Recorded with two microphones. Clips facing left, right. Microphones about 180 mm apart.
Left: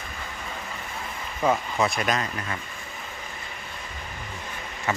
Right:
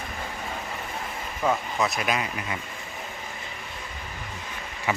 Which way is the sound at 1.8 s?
Centre (ahead or behind).